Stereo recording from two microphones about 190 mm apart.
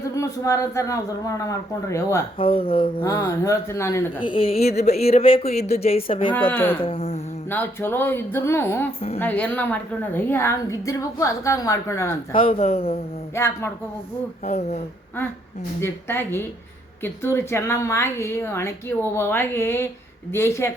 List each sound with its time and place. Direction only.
0.1 s a woman's voice: 15° left (ahead or behind)
2.4 s speech: 30° left (ahead or behind)
3.0 s a woman's voice: 15° left (ahead or behind)
4.3 s speech: 30° left (ahead or behind)
6.3 s a woman's voice: 10° left (ahead or behind)
6.7 s speech: 30° left (ahead or behind)
7.5 s a woman's voice: 10° left (ahead or behind)
12.4 s speech: 30° left (ahead or behind)
13.3 s a woman's voice: 15° left (ahead or behind)
14.4 s speech: 35° left (ahead or behind)
15.8 s a woman's voice: 10° left (ahead or behind)